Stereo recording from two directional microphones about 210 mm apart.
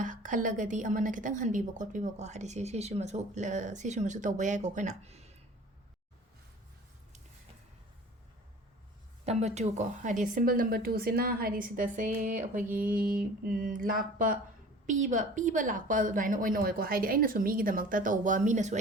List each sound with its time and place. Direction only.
0.0 s a woman's voice: 40° right (ahead or behind)
9.2 s a woman's voice: 30° right (ahead or behind)